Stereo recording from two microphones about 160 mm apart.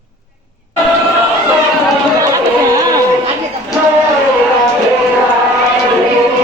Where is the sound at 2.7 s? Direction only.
20° right (ahead or behind).